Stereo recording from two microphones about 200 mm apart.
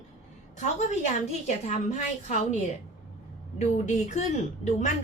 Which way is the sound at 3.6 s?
35° left (ahead or behind).